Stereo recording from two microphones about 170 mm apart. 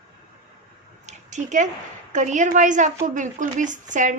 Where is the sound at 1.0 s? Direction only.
45° right (ahead or behind).